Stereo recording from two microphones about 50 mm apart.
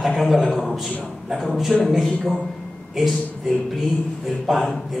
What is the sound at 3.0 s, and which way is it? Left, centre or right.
A man's voice, centre.